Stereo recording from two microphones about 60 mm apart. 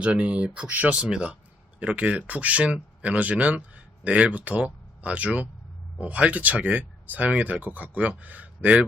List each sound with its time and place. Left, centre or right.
0.0 s speech: centre